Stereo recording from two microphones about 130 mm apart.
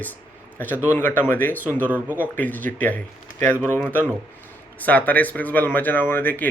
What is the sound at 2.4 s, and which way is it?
Speech, 15° left (ahead or behind).